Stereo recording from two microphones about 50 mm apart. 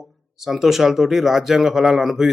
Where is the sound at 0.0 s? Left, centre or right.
Centre.